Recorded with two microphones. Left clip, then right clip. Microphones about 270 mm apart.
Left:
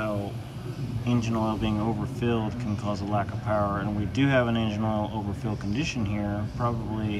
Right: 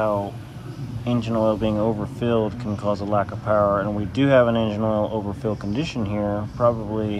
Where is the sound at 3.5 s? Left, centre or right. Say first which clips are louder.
Right 8 dB; right.